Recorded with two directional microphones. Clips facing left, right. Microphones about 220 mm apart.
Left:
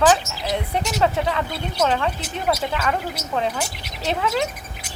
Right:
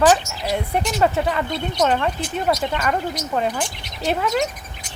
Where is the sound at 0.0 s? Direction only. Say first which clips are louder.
Right 1 dB; centre (ahead or behind).